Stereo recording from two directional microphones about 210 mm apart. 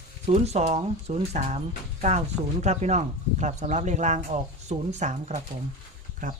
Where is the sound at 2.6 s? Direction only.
35° right (ahead or behind).